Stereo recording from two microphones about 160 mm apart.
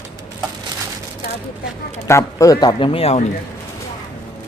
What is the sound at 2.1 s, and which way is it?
Speech, 20° left (ahead or behind).